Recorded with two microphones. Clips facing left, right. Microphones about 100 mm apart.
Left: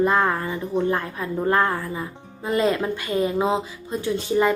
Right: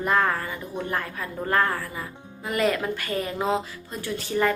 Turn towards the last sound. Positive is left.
turn(degrees=20)  # may be behind; listen again after turning